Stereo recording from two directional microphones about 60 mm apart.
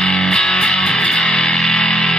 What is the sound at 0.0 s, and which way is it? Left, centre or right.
Music, centre.